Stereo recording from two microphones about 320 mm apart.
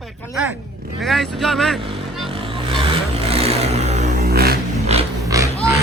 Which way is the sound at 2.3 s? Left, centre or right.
Centre.